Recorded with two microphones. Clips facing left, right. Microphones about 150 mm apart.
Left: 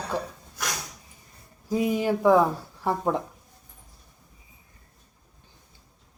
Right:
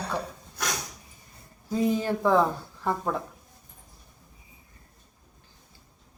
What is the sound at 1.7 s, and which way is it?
A woman's voice, 10° left (ahead or behind).